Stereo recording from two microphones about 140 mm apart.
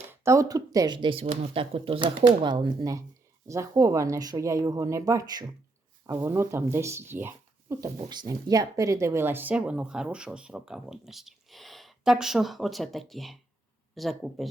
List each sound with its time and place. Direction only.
0.1 s speech: 20° right (ahead or behind)
8.1 s speech: 30° right (ahead or behind); by 14.4 s centre (ahead or behind)